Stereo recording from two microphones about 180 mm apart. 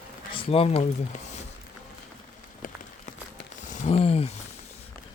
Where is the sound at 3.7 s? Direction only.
35° left (ahead or behind).